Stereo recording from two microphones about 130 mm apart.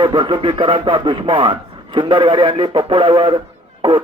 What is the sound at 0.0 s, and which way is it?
A man's voice, 40° right (ahead or behind).